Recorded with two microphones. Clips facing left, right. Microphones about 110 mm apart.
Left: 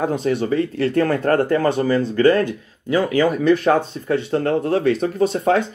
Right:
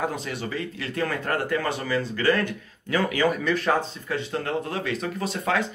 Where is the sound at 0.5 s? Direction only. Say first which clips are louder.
Left 12 dB; 35° left (ahead or behind).